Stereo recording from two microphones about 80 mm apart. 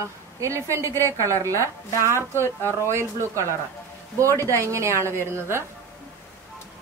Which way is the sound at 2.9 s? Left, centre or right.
Right.